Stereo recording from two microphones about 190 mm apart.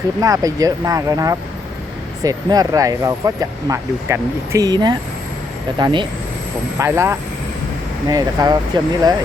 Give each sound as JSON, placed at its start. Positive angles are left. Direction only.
{"t": 0.2, "sound": "speech", "side_deg": -15}
{"t": 6.7, "sound": "speech", "side_deg": -15}